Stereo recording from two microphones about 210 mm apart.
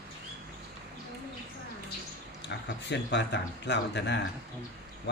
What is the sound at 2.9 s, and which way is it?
Speech, 55° left (ahead or behind).